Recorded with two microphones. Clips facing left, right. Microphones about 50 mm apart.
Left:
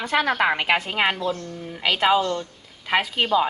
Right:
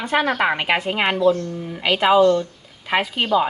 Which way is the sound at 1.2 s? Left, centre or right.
Right.